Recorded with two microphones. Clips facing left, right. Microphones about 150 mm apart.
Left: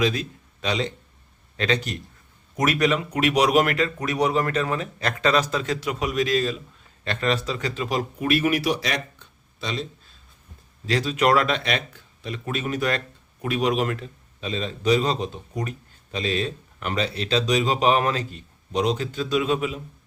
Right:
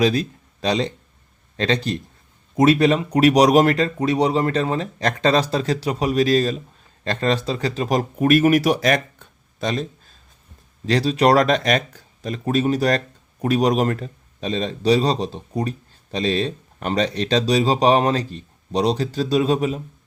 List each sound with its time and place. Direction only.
0.0 s a man's voice: 35° right (ahead or behind)
10.8 s speech: 35° right (ahead or behind)